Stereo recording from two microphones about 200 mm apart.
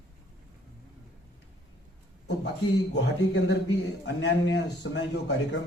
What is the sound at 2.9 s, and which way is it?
A man's voice, 55° left (ahead or behind).